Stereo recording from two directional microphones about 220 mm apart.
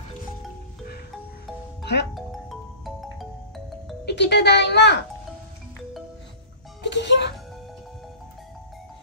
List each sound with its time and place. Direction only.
1.8 s music: 50° left (ahead or behind)
2.1 s music: centre (ahead or behind)
4.0 s a child's voice: 50° left (ahead or behind)
6.8 s speech: 55° left (ahead or behind)